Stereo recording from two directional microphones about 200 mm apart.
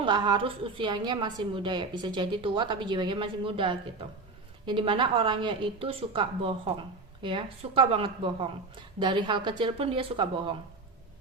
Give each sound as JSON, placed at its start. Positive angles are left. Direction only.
{"t": 0.0, "sound": "a woman's voice", "side_deg": -25}